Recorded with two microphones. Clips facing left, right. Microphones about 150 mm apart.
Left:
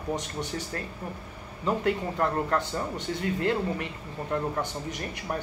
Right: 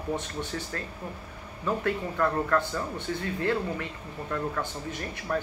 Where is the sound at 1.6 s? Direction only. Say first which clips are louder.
Left 2 dB; 25° left (ahead or behind).